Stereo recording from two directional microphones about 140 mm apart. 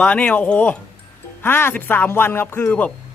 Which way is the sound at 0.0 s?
10° left (ahead or behind).